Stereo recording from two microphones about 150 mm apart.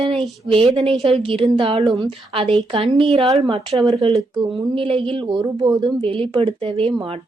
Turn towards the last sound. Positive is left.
turn(degrees=-35)  # may be behind; listen again after turning